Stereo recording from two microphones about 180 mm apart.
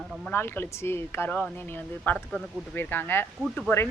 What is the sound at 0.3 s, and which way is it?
A woman's voice, 10° left (ahead or behind).